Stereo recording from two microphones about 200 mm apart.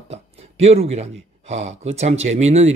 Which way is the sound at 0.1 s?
30° right (ahead or behind).